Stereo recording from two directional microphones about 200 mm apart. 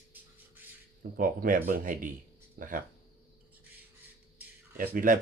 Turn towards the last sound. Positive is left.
turn(degrees=-40)  # may be behind; listen again after turning